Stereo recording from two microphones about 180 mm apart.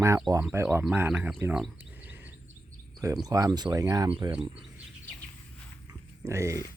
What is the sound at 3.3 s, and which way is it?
Speech, 20° right (ahead or behind).